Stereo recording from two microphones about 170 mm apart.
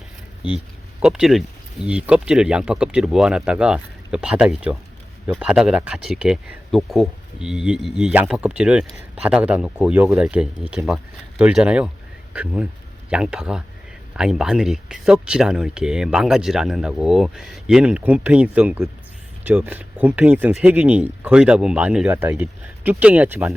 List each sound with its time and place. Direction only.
0.4 s speech: 30° left (ahead or behind)
1.0 s speech: 5° right (ahead or behind)